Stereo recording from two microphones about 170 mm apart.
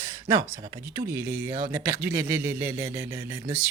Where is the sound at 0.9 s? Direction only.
15° right (ahead or behind).